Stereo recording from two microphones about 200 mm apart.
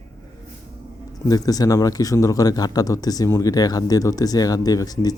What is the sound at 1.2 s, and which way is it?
Speech, 20° left (ahead or behind).